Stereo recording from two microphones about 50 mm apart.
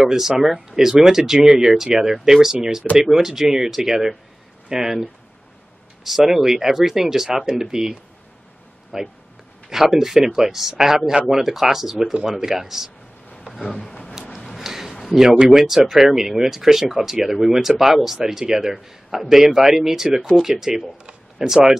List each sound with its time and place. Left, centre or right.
0.0 s speech: centre
6.0 s speech: centre
13.6 s speech: centre
14.6 s a sound: centre
15.1 s speech: centre